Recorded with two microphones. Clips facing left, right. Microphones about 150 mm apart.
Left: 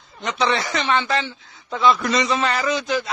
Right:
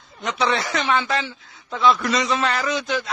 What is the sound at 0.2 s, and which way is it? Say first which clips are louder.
A man's voice: left 1 dB; centre (ahead or behind).